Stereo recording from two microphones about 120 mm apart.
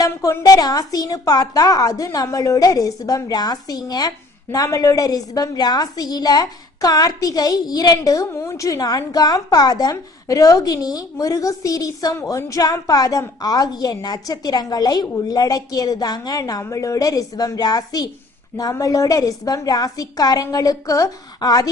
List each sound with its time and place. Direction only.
0.0 s a woman's voice: 30° left (ahead or behind)